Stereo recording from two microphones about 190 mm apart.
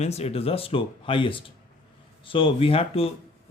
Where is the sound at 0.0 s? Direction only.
35° left (ahead or behind).